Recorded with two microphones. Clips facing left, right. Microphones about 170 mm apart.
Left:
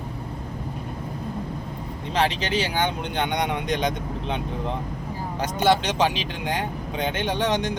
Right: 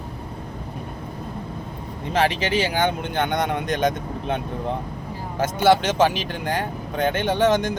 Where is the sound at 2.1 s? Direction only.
55° right (ahead or behind).